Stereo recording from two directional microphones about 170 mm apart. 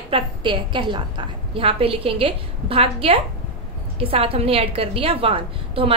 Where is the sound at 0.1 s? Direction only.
30° right (ahead or behind).